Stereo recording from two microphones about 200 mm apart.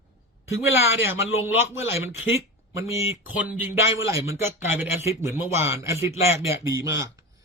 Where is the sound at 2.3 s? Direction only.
15° right (ahead or behind).